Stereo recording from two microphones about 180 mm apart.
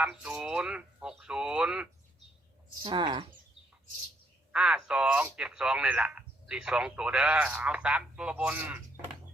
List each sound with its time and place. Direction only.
0.0 s a man's voice: 5° right (ahead or behind)
2.8 s speech: 25° right (ahead or behind)
4.5 s a man's voice: 5° right (ahead or behind)